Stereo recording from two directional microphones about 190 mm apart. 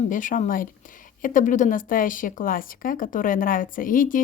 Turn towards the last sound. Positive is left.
turn(degrees=45)  # may be behind; listen again after turning